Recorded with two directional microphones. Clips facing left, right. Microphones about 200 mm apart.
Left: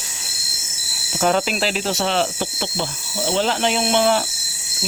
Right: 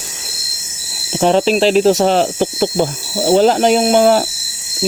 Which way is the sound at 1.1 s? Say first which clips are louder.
Right 7 dB; 30° right (ahead or behind).